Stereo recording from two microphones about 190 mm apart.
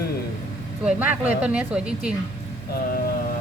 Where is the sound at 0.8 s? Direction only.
10° right (ahead or behind).